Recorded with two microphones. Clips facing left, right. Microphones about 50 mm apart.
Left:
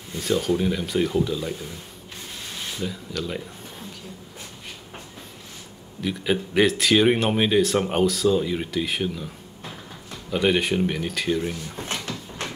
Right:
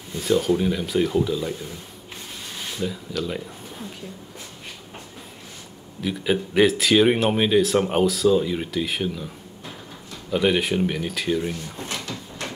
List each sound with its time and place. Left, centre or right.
0.1 s speech: centre
2.8 s speech: centre
6.0 s speech: centre
11.9 s a sound: left